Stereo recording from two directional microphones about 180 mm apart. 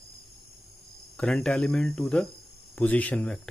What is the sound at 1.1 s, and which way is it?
Speech, 5° left (ahead or behind).